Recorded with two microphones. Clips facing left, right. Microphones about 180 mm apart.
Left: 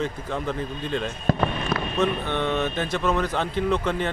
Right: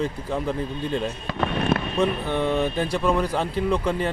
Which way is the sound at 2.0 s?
5° right (ahead or behind).